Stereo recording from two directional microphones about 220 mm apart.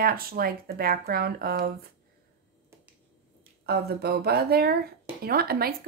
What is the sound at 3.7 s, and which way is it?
A woman's voice, 45° right (ahead or behind).